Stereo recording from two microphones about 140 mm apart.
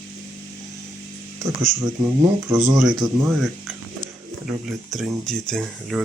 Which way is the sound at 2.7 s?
Centre (ahead or behind).